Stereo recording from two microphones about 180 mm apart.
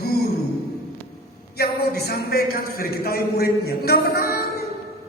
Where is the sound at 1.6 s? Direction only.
60° left (ahead or behind).